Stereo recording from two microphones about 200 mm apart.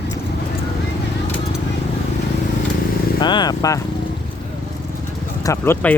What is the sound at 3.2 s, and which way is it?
Speech, 20° left (ahead or behind).